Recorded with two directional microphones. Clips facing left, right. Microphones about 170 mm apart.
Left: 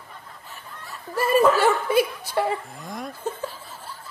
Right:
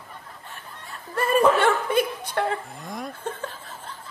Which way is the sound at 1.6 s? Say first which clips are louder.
Left 1 dB; 5° left (ahead or behind).